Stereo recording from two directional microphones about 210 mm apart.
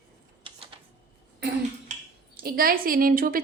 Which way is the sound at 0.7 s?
25° right (ahead or behind).